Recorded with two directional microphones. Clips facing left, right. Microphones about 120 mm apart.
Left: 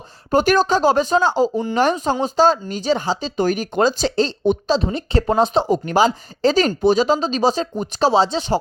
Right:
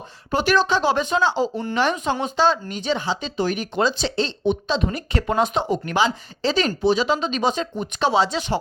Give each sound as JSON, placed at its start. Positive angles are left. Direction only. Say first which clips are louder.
{"t": 0.3, "sound": "speech", "louder": "left 4 dB", "side_deg": 45}